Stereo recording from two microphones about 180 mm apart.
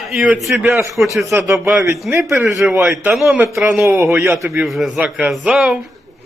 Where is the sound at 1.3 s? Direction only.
15° right (ahead or behind).